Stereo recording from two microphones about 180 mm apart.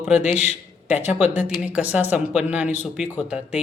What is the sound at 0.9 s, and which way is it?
Speech, 10° right (ahead or behind).